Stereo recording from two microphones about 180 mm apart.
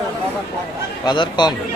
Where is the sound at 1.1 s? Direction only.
25° left (ahead or behind).